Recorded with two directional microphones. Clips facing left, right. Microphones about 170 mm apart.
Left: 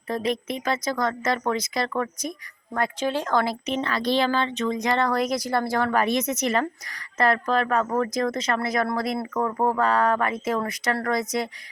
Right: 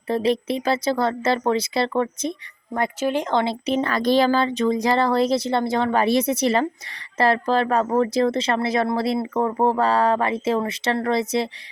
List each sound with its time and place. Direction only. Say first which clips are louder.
0.1 s speech: right 5 dB; 30° right (ahead or behind)
3.0 s speech: right 3 dB; 15° right (ahead or behind)
3.8 s speech: right 5 dB; 45° right (ahead or behind); by 11.4 s 30° right (ahead or behind)